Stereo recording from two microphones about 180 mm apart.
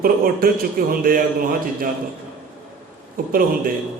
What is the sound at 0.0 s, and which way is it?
Speech, 55° right (ahead or behind).